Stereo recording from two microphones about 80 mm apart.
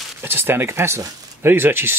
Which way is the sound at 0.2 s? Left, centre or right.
Right.